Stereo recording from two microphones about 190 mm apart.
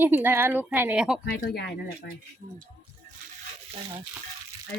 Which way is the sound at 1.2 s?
55° left (ahead or behind).